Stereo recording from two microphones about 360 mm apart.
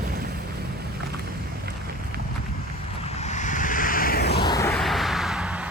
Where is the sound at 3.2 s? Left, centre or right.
Centre.